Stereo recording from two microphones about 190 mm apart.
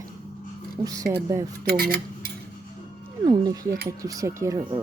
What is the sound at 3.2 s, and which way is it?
Speech, 20° right (ahead or behind).